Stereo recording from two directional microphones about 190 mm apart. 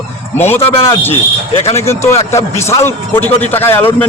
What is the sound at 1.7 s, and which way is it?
A man's voice, 15° left (ahead or behind).